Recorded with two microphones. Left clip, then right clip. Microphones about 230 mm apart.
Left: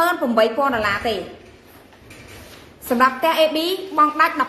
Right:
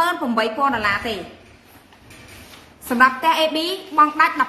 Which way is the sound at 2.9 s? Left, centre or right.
Centre.